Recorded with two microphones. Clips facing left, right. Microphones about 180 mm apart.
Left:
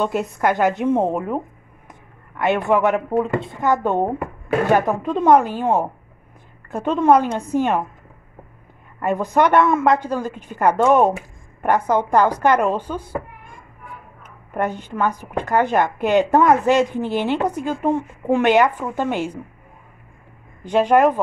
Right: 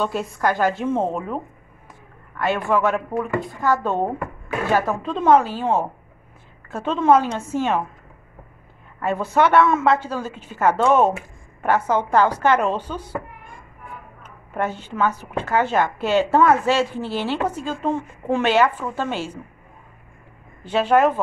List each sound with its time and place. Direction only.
0.0 s a woman's voice: 20° left (ahead or behind)
9.0 s a woman's voice: 15° left (ahead or behind)
14.5 s a woman's voice: 15° left (ahead or behind)
20.6 s a woman's voice: 15° left (ahead or behind)